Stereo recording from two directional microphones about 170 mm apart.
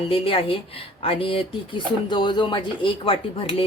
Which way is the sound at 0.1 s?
30° left (ahead or behind).